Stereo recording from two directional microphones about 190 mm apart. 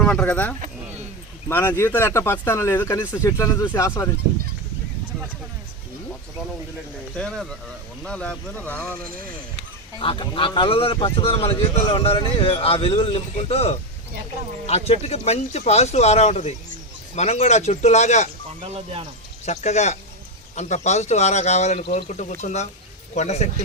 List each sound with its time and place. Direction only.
0.0 s speech: 5° left (ahead or behind)
7.2 s speech: 5° left (ahead or behind)
9.0 s speech: 50° right (ahead or behind)
10.0 s speech: 25° left (ahead or behind)
18.6 s speech: 30° right (ahead or behind)
19.5 s speech: 35° left (ahead or behind)